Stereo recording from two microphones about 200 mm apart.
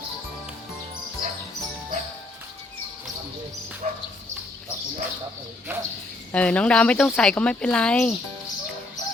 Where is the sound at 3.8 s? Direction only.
35° right (ahead or behind).